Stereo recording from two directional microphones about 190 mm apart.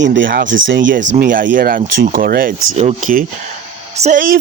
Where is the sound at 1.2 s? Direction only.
45° right (ahead or behind).